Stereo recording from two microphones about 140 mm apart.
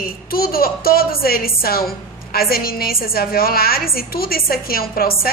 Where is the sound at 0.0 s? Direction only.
90° left.